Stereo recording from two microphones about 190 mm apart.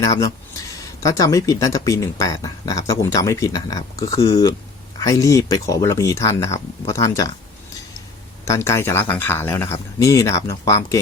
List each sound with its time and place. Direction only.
0.0 s speech: 20° left (ahead or behind)
8.4 s speech: 15° left (ahead or behind)